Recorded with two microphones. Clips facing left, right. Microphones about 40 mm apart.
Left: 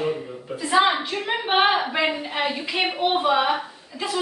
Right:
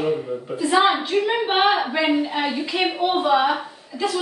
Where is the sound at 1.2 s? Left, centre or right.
Centre.